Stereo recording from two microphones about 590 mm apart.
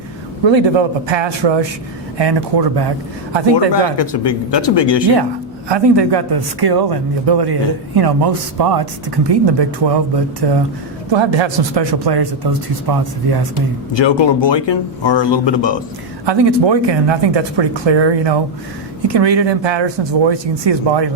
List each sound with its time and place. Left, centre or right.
0.4 s a man's voice: right
3.7 s speech: left
5.6 s a man's voice: right
11.3 s a man's voice: right
13.9 s speech: left
16.2 s a man's voice: right